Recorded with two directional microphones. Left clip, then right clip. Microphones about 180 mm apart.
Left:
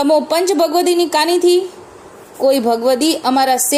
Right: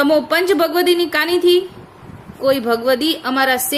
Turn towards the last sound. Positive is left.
turn(degrees=15)  # may be behind; listen again after turning